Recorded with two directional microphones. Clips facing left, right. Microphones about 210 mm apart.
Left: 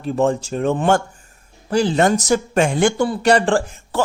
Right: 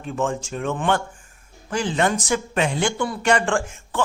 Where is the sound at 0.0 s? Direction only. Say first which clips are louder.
Left 7 dB; 35° left (ahead or behind).